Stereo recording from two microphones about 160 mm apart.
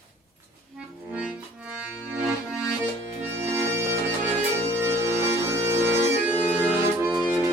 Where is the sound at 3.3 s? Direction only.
15° right (ahead or behind).